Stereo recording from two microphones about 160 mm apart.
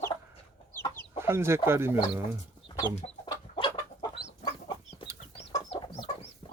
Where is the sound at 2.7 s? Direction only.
25° left (ahead or behind).